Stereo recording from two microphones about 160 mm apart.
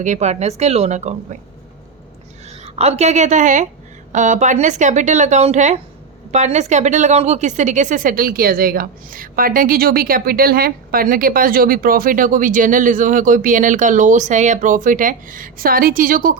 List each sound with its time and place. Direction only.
0.0 s speech: 45° right (ahead or behind)
2.5 s a woman's voice: 40° right (ahead or behind); by 16.3 s 60° right (ahead or behind)